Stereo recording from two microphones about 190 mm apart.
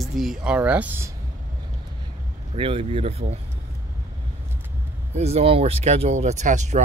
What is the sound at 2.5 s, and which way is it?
Speech, 30° right (ahead or behind).